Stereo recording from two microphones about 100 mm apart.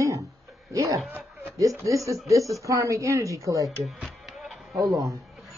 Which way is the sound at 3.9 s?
Centre (ahead or behind).